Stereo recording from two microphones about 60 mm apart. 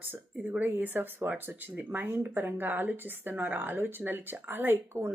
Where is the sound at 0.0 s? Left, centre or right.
Right.